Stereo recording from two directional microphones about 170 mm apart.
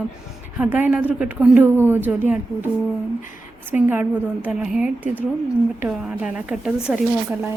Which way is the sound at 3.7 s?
10° right (ahead or behind).